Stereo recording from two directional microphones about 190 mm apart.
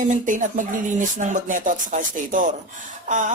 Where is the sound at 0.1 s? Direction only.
40° right (ahead or behind).